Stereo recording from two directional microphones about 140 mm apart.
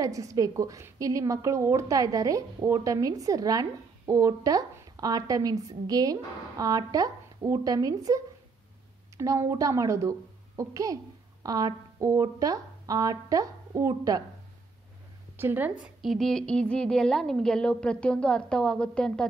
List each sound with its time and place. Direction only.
0.0 s a woman's voice: 25° right (ahead or behind)
15.3 s speech: 15° right (ahead or behind)
15.8 s a woman's voice: centre (ahead or behind)